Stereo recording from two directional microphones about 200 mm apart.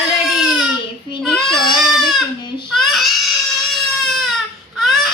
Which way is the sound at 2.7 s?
Centre (ahead or behind).